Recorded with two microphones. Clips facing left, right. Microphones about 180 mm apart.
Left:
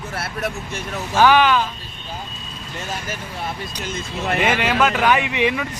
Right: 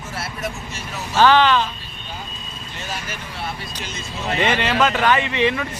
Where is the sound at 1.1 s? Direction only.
10° left (ahead or behind).